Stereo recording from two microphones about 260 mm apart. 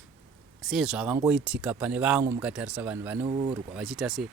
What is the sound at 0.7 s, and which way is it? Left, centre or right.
Speech, centre.